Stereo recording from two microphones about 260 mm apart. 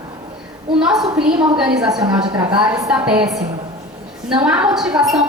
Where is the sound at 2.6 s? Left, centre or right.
Centre.